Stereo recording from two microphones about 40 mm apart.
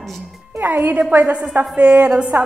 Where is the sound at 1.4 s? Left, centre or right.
Right.